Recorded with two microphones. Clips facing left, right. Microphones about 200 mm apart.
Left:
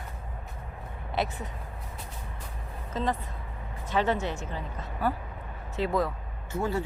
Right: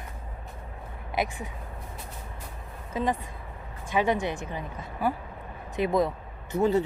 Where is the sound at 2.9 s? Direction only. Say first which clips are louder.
Right 2 dB; 15° right (ahead or behind).